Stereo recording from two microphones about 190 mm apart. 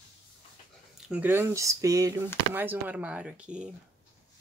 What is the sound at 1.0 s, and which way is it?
Speech, 10° right (ahead or behind).